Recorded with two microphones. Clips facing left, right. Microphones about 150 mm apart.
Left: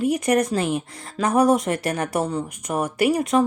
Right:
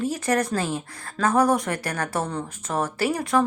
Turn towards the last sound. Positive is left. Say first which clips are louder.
# left 4 dB
turn(degrees=20)  # may be behind; listen again after turning